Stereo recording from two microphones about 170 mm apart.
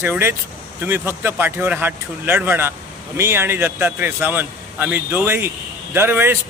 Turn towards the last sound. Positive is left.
turn(degrees=-15)  # may be behind; listen again after turning